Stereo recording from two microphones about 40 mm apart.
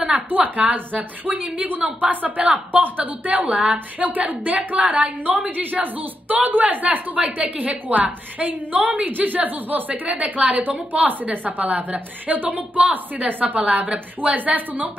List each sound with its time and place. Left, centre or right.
0.3 s a woman's voice: right